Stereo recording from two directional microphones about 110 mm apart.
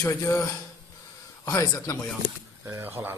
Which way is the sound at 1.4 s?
35° left (ahead or behind).